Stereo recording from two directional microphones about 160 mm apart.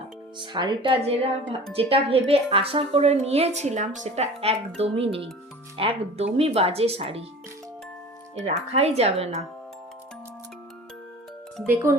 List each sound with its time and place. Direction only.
0.3 s a woman's voice: 30° right (ahead or behind)
8.7 s a woman's voice: 40° right (ahead or behind)
11.6 s speech: 15° right (ahead or behind)